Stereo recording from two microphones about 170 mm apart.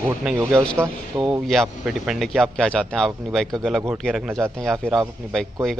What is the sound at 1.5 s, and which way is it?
Speech, centre (ahead or behind).